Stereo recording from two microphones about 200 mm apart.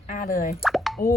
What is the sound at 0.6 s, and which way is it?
Plop, centre (ahead or behind).